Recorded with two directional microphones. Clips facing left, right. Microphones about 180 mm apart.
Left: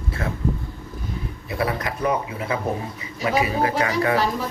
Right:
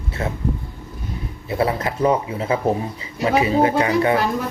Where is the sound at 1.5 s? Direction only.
25° right (ahead or behind).